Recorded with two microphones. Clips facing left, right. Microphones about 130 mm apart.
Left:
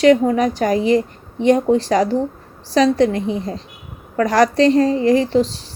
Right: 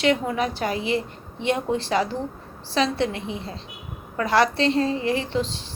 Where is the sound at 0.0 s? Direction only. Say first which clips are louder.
Left 9 dB; 40° left (ahead or behind).